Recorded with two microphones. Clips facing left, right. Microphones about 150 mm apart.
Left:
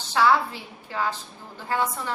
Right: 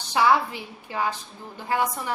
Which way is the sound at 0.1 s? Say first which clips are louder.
Even; 15° right (ahead or behind).